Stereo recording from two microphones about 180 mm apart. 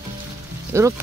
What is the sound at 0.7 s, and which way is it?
Speech, 15° right (ahead or behind).